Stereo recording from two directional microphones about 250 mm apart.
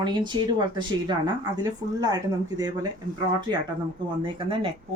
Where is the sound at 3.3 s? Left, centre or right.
Centre.